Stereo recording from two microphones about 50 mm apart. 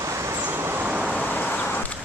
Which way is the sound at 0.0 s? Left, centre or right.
Right.